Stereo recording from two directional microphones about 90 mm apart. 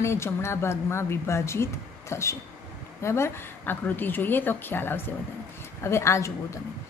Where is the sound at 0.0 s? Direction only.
30° left (ahead or behind).